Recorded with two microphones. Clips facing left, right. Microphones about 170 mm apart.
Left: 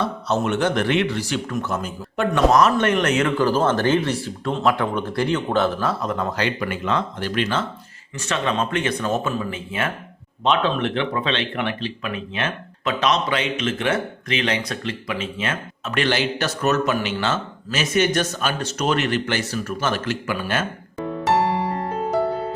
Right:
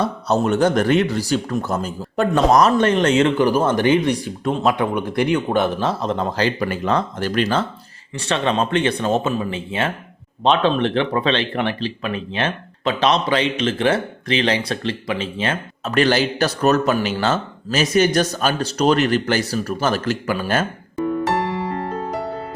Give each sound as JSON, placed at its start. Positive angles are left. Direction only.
{"t": 0.0, "sound": "speech", "side_deg": -40}